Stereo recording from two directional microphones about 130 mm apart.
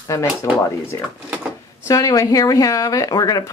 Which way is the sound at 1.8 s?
25° left (ahead or behind).